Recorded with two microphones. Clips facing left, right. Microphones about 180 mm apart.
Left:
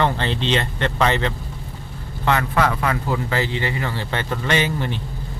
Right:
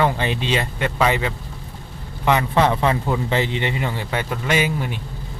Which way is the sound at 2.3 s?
20° right (ahead or behind).